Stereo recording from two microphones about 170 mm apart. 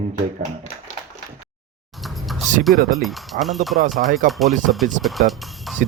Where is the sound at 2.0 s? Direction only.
Centre (ahead or behind).